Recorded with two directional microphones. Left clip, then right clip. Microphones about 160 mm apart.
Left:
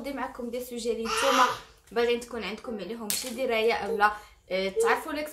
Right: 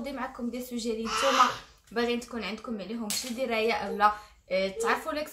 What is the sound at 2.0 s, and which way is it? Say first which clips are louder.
A woman's voice: left 3 dB; 5° left (ahead or behind).